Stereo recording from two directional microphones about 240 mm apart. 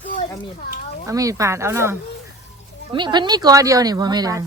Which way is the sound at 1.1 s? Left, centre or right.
Centre.